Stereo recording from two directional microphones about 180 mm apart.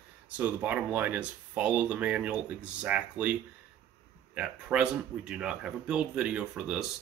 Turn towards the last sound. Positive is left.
turn(degrees=-5)  # may be behind; listen again after turning